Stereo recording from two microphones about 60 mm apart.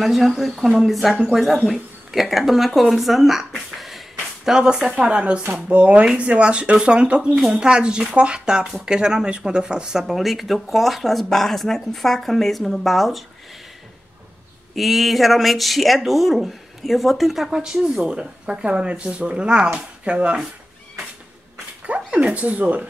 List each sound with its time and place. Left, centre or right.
0.0 s speech: centre
5.7 s speech: right; by 13.2 s centre
14.8 s speech: centre; by 20.3 s right
21.8 s speech: right